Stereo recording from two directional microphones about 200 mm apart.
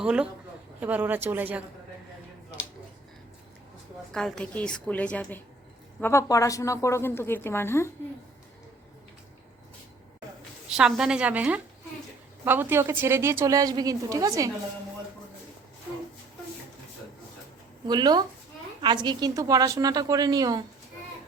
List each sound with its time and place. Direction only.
0.0 s a woman's voice: 5° right (ahead or behind)
4.1 s a woman's voice: centre (ahead or behind)
10.7 s a woman's voice: 5° right (ahead or behind)
17.8 s a woman's voice: 20° right (ahead or behind)